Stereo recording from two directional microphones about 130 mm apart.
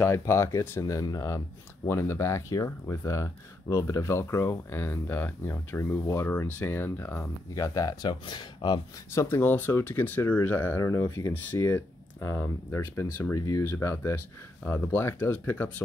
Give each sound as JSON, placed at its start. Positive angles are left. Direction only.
{"t": 0.0, "sound": "speech", "side_deg": 20}
{"t": 9.1, "sound": "speech", "side_deg": 20}